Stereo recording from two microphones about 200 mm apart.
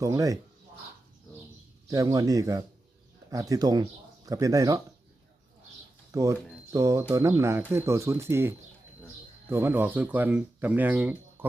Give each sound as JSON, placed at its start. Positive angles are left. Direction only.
{"t": 0.0, "sound": "speech", "side_deg": -15}
{"t": 1.9, "sound": "speech", "side_deg": -15}
{"t": 6.1, "sound": "speech", "side_deg": -15}